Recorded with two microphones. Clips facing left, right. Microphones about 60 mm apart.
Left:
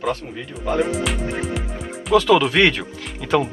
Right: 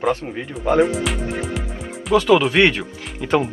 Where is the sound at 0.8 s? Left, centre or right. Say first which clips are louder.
Right 2 dB; centre.